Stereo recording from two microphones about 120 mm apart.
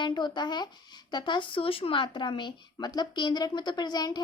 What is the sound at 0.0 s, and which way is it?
A child's voice, 40° left (ahead or behind).